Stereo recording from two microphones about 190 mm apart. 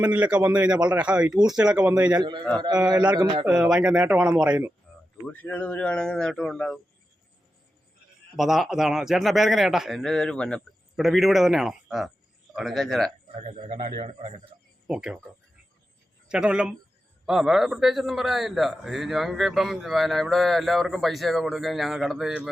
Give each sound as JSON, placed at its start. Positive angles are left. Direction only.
{"t": 0.0, "sound": "a man's voice", "side_deg": -10}
{"t": 3.4, "sound": "a man's voice", "side_deg": -5}
{"t": 5.2, "sound": "a man's voice", "side_deg": 10}
{"t": 8.4, "sound": "a man's voice", "side_deg": 0}
{"t": 13.2, "sound": "a man's voice", "side_deg": -35}
{"t": 14.8, "sound": "a man's voice", "side_deg": -5}
{"t": 16.3, "sound": "a man's voice", "side_deg": -5}